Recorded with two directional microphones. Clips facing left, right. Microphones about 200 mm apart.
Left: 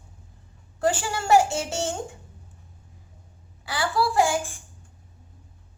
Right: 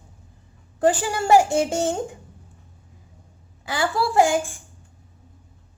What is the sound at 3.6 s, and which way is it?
Speech, 20° right (ahead or behind).